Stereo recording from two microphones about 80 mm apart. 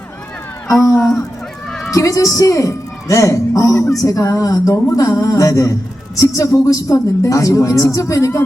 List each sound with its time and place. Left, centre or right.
0.8 s a man's voice: left
1.9 s a woman's voice: left